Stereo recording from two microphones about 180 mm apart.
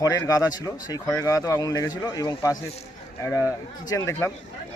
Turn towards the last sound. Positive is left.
turn(degrees=15)  # may be behind; listen again after turning